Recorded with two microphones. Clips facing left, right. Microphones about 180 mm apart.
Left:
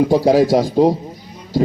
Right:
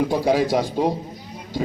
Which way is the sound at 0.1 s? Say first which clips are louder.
Left 7 dB; 40° left (ahead or behind).